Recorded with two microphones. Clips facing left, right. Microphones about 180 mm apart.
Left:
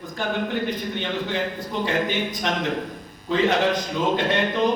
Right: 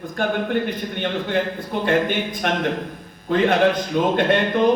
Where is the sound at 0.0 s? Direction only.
55° right (ahead or behind).